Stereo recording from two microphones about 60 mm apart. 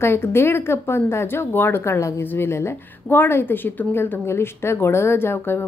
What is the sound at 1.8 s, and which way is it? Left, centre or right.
A woman's voice, left.